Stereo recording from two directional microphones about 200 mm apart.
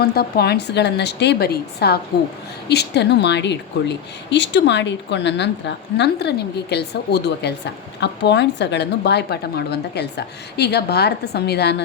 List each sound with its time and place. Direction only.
0.0 s a woman's voice: 50° left (ahead or behind)